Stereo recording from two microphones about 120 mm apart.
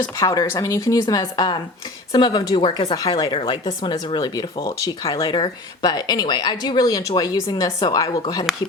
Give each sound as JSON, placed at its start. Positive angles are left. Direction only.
{"t": 0.2, "sound": "speech", "side_deg": 30}